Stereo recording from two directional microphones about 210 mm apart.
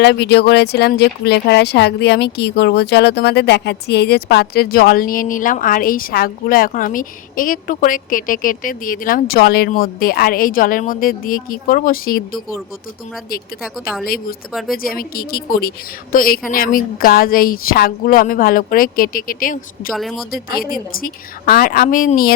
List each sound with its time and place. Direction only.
0.0 s speech: 50° left (ahead or behind)
13.6 s speech: centre (ahead or behind)
14.8 s speech: 45° left (ahead or behind)
19.9 s speech: centre (ahead or behind)
20.3 s speech: 45° left (ahead or behind)